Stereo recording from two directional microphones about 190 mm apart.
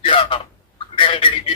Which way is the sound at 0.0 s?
25° left (ahead or behind).